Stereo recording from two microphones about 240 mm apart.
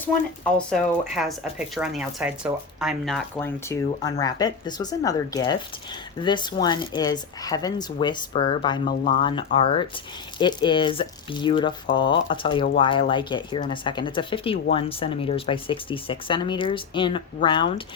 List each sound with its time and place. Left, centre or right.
0.5 s speech: centre
3.3 s speech: centre